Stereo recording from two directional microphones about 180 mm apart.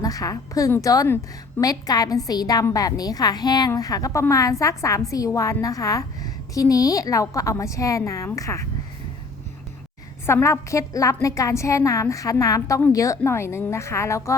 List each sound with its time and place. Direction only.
0.0 s a woman's voice: 20° left (ahead or behind)
10.2 s a woman's voice: 15° left (ahead or behind)